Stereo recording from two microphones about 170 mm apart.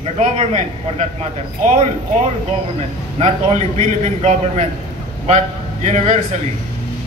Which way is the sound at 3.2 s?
35° right (ahead or behind).